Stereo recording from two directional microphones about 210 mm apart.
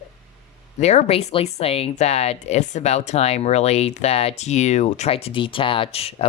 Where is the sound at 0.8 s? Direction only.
30° left (ahead or behind).